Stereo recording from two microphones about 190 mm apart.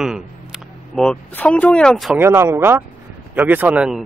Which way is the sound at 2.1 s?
10° right (ahead or behind).